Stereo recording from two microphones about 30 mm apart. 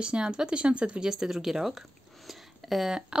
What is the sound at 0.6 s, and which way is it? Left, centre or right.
Speech, right.